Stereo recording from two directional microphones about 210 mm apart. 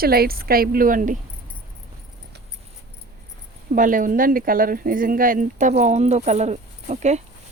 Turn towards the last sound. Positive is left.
turn(degrees=-30)  # may be behind; listen again after turning